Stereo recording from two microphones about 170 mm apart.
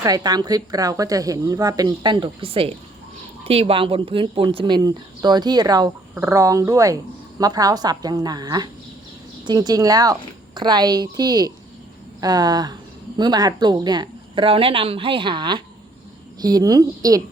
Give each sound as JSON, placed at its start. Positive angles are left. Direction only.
{"t": 0.0, "sound": "speech", "side_deg": -25}